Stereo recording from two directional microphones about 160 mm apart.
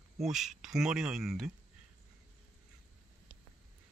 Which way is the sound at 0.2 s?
Centre (ahead or behind).